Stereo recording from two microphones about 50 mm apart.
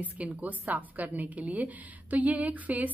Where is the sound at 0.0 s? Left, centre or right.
Right.